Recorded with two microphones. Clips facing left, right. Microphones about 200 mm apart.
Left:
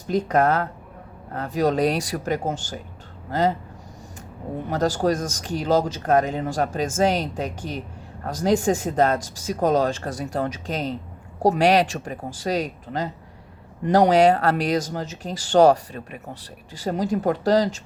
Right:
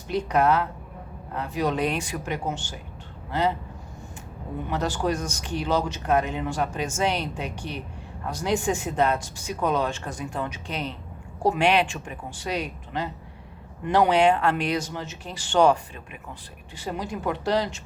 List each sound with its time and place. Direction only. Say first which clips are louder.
0.1 s speech: left 2 dB; 45° left (ahead or behind)
4.7 s speech: left 5 dB; 40° left (ahead or behind)